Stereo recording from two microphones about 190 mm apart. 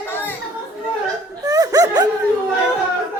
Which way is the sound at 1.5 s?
20° right (ahead or behind).